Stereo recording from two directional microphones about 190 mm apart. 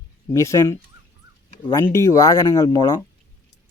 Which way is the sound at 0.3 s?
15° left (ahead or behind).